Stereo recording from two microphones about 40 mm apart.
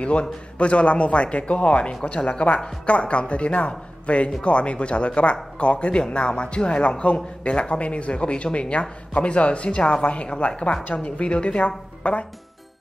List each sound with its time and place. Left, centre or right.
0.0 s speech: left